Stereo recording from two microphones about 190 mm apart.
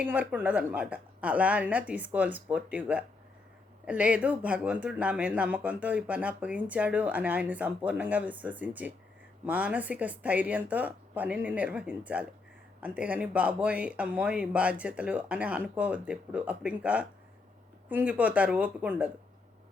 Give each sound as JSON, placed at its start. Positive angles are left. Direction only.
{"t": 0.0, "sound": "speech", "side_deg": -10}